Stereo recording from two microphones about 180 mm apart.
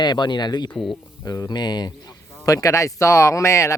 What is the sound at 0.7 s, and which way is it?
Speech, 5° left (ahead or behind).